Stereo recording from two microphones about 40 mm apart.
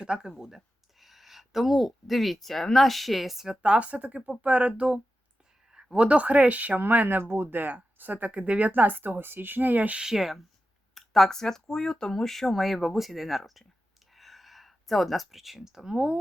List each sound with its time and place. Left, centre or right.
0.0 s speech: right
0.3 s speech: centre
3.6 s speech: right
6.7 s speech: right
10.0 s speech: centre
10.9 s speech: centre
14.2 s a sound: centre
16.0 s speech: right